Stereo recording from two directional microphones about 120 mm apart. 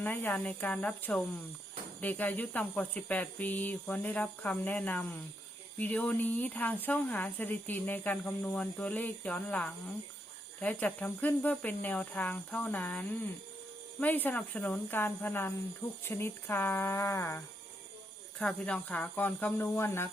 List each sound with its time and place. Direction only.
0.0 s speech: 15° left (ahead or behind)
18.3 s speech: 5° left (ahead or behind)